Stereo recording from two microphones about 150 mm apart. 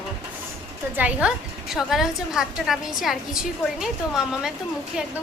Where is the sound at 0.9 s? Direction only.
10° right (ahead or behind).